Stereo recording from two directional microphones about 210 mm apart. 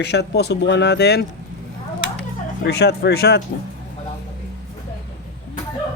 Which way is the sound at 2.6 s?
50° left (ahead or behind).